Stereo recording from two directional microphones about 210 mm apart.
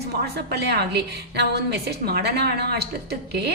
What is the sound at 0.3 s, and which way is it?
A woman's voice, 50° right (ahead or behind).